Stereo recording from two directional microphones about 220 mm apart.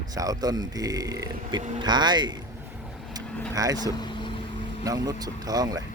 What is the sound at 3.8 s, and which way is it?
Speech, 20° left (ahead or behind).